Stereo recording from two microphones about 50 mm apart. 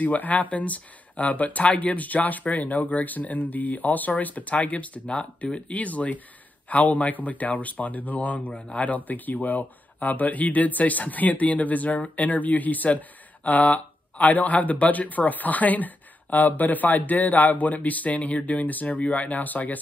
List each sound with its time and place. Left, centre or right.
0.0 s speech: left